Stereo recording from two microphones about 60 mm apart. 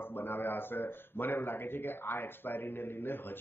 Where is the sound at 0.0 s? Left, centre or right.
Left.